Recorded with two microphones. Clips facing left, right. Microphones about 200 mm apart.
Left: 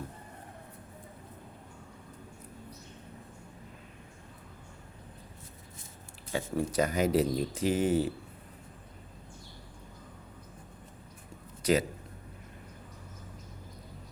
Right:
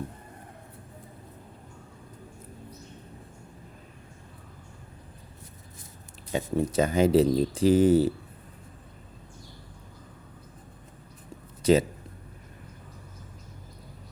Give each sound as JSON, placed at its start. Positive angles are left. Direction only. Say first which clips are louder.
{"t": 6.3, "sound": "speech", "louder": "right 4 dB", "side_deg": -25}
{"t": 11.6, "sound": "speech", "louder": "right 6 dB", "side_deg": -25}